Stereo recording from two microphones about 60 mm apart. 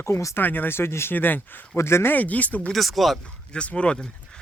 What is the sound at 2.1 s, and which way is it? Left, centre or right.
Speech, left.